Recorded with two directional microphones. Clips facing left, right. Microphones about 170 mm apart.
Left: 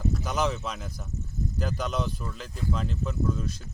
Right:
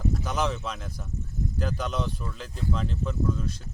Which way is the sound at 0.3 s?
Centre (ahead or behind).